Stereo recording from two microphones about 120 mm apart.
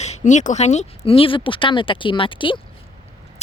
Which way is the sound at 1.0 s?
50° left (ahead or behind).